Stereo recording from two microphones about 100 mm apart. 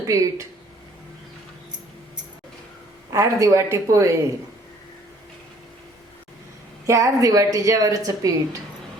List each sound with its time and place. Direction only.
0.0 s a woman's voice: 35° right (ahead or behind)
3.1 s a woman's voice: 30° right (ahead or behind)
6.8 s a woman's voice: 35° right (ahead or behind)